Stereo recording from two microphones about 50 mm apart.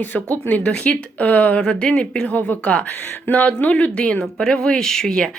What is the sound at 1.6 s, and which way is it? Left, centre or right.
Speech, centre.